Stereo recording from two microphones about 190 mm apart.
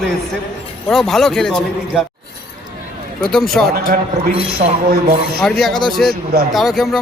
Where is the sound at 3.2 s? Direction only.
Centre (ahead or behind).